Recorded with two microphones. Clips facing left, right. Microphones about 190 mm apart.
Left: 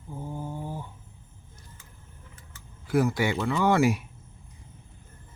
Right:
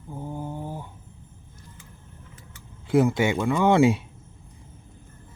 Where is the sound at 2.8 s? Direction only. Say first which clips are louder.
Right 4 dB; 25° right (ahead or behind).